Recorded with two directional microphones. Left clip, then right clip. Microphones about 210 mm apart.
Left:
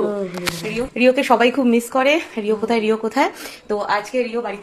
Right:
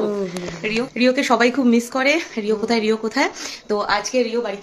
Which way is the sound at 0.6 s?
30° right (ahead or behind).